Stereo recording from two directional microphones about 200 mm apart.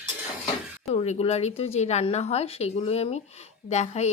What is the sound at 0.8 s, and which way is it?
A woman's voice, 35° left (ahead or behind).